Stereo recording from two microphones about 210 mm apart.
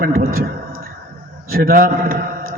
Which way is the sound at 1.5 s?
45° right (ahead or behind).